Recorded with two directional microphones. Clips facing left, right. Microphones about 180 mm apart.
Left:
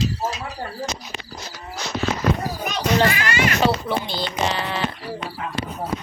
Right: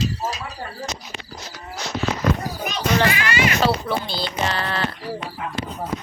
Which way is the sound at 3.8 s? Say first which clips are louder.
Even; 15° left (ahead or behind).